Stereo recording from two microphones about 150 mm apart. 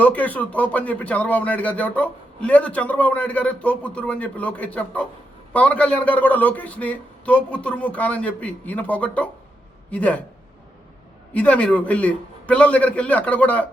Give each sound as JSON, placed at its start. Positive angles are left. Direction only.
{"t": 0.0, "sound": "speech", "side_deg": 10}
{"t": 11.3, "sound": "speech", "side_deg": 10}